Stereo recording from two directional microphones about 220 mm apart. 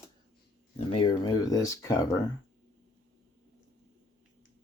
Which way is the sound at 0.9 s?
20° left (ahead or behind).